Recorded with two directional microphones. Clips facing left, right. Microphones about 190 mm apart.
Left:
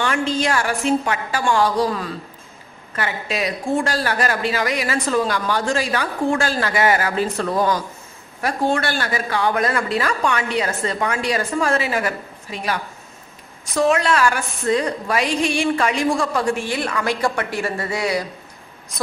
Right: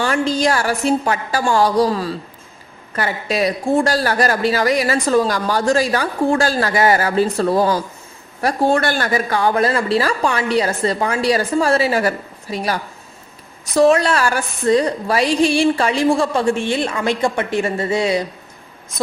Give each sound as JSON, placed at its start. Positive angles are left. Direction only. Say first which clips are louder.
{"t": 0.0, "sound": "speech", "louder": "right 3 dB", "side_deg": -35}